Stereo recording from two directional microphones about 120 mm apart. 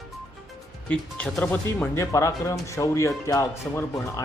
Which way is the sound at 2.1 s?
25° left (ahead or behind).